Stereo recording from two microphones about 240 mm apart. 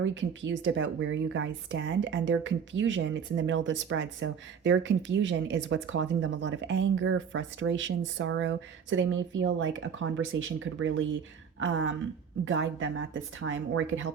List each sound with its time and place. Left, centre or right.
0.0 s a woman's voice: right
12.5 s a woman's voice: right